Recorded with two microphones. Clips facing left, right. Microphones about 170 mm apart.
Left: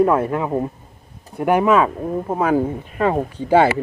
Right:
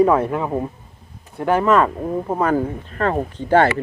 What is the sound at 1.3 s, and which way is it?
Speech, 15° left (ahead or behind).